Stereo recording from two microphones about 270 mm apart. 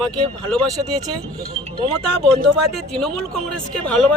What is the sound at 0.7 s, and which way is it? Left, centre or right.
Speech, centre.